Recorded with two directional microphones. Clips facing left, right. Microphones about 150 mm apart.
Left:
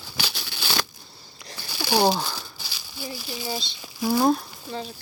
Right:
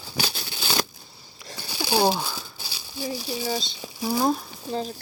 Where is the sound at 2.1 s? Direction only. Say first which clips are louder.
Left 1 dB; 10° right (ahead or behind).